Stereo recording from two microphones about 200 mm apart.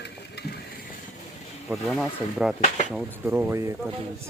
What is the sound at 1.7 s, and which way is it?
Speech, centre (ahead or behind).